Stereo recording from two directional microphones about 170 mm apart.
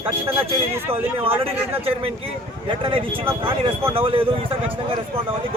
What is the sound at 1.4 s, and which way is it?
Speech, 35° right (ahead or behind).